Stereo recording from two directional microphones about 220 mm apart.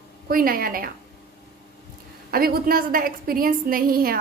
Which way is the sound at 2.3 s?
40° right (ahead or behind).